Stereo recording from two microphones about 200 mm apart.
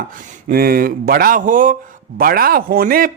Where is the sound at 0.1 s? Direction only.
45° right (ahead or behind).